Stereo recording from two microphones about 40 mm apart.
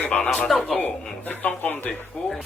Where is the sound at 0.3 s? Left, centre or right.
Centre.